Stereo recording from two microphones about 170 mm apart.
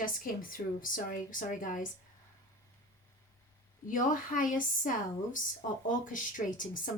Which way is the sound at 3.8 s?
50° left (ahead or behind).